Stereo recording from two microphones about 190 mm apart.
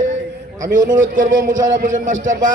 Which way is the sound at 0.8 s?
45° right (ahead or behind).